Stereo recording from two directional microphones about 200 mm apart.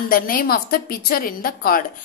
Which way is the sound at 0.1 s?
45° left (ahead or behind).